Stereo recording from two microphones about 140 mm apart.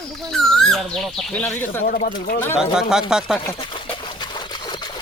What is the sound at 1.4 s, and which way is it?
Speech, 15° left (ahead or behind).